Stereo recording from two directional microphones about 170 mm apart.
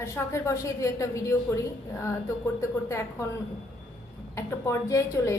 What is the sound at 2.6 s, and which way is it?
Speech, 15° left (ahead or behind).